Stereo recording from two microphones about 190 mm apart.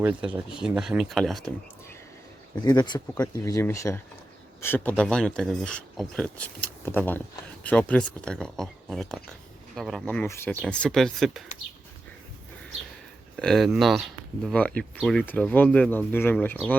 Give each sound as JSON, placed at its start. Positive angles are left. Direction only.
{"t": 0.0, "sound": "speech", "side_deg": -10}
{"t": 2.6, "sound": "speech", "side_deg": 20}
{"t": 13.3, "sound": "speech", "side_deg": 0}